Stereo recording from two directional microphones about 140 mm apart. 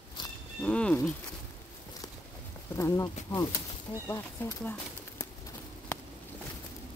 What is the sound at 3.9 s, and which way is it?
Speech, 35° left (ahead or behind).